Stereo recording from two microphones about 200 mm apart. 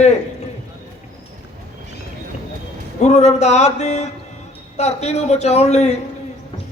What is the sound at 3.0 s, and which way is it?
A man's voice, 35° left (ahead or behind).